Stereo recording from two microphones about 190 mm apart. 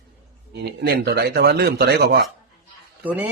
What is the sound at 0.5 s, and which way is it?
Speech, 55° right (ahead or behind).